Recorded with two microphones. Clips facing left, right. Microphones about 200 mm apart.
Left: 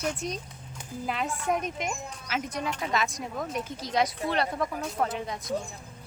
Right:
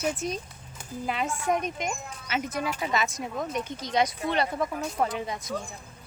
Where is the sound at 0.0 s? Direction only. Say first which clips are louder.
Right 2 dB; 5° right (ahead or behind).